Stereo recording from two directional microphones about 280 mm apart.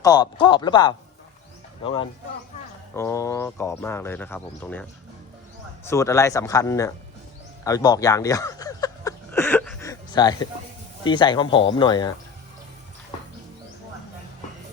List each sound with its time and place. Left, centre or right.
0.0 s speech: centre
5.9 s speech: centre
7.6 s a sound: centre
11.0 s speech: centre